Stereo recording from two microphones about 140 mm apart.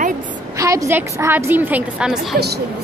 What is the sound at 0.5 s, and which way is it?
A woman's voice, 25° right (ahead or behind).